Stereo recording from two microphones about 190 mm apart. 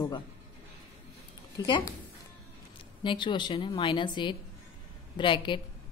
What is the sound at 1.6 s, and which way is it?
Speech, 20° left (ahead or behind).